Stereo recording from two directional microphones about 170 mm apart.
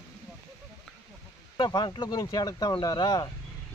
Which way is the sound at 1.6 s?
25° left (ahead or behind).